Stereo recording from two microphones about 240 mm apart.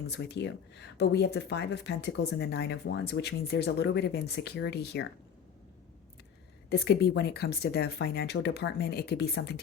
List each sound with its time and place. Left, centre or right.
0.1 s speech: left
6.7 s speech: left